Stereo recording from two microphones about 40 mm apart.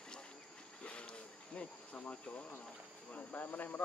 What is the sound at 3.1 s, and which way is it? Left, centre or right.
Speech, left.